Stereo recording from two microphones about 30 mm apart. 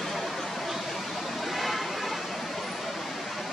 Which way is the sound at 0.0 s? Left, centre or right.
Centre.